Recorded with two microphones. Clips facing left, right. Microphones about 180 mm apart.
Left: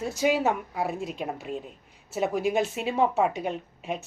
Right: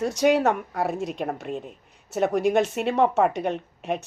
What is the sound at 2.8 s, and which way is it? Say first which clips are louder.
A woman's voice: right 3 dB; 65° right (ahead or behind).